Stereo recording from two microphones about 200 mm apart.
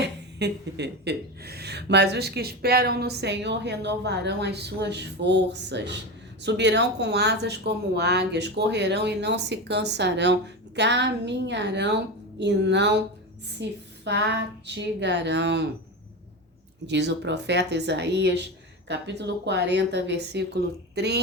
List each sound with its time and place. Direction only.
0.0 s speech: 60° right (ahead or behind)
16.8 s speech: 60° right (ahead or behind)